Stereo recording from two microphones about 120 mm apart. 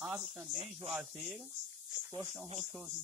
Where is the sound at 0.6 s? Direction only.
55° right (ahead or behind).